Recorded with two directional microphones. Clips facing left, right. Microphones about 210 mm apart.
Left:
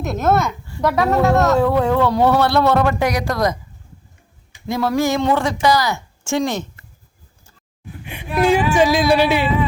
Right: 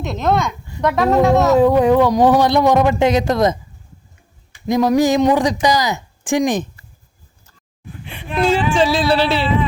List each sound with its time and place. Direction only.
0.0 s speech: 5° left (ahead or behind)
1.5 s speech: 15° right (ahead or behind)
4.6 s speech: 15° right (ahead or behind)
8.1 s speech: 10° left (ahead or behind)